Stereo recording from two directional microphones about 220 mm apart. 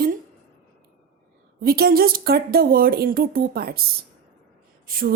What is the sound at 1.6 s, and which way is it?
Speech, 45° right (ahead or behind).